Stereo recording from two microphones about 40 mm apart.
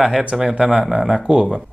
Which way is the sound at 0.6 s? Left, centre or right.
Centre.